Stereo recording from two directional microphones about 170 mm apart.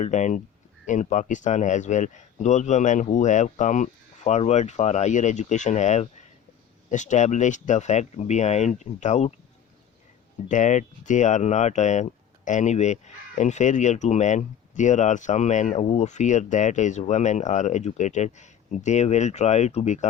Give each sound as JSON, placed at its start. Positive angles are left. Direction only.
{"t": 0.0, "sound": "speech", "side_deg": 45}
{"t": 10.5, "sound": "speech", "side_deg": 45}